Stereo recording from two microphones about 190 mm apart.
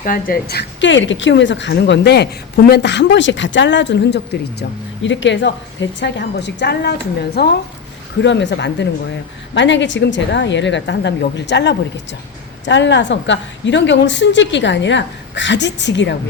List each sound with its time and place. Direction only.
0.0 s a woman's voice: 45° left (ahead or behind); by 4.4 s 60° left (ahead or behind)
5.0 s a woman's voice: 75° left (ahead or behind); by 7.5 s 60° left (ahead or behind)
8.2 s a woman's voice: 70° left (ahead or behind)